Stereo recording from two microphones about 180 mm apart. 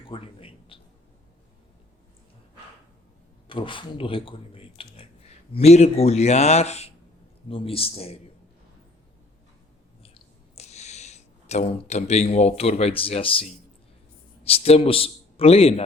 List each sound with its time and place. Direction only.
0.1 s a sound: 30° left (ahead or behind)
3.4 s speech: 30° left (ahead or behind)
10.5 s a man's voice: 35° left (ahead or behind)